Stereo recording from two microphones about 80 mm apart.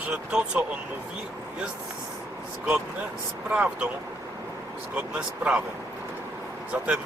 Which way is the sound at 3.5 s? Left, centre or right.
Centre.